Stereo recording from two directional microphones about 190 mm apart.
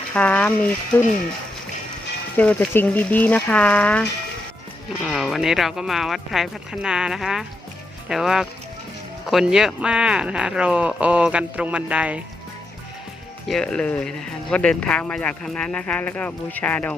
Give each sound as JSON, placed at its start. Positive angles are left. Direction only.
{"t": 0.1, "sound": "speech", "side_deg": 5}
{"t": 2.3, "sound": "speech", "side_deg": 5}
{"t": 5.0, "sound": "speech", "side_deg": 0}
{"t": 13.5, "sound": "speech", "side_deg": 5}